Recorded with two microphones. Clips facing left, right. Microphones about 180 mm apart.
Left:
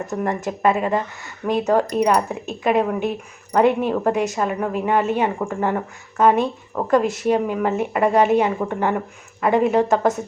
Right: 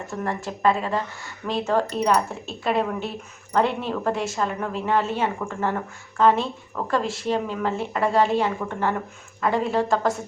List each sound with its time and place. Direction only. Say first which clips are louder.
0.0 s a woman's voice: left 5 dB; 20° left (ahead or behind)